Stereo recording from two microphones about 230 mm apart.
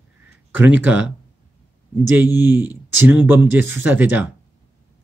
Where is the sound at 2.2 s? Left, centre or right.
Centre.